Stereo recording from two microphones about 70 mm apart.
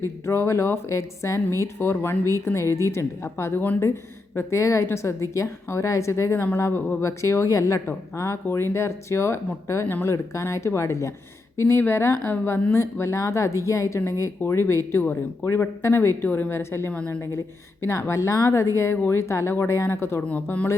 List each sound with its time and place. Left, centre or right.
0.0 s a woman's voice: left
8.1 s a woman's voice: left
18.1 s speech: left
20.2 s speech: left